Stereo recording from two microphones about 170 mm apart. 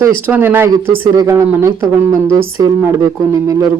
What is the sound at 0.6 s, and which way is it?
Speech, 25° right (ahead or behind).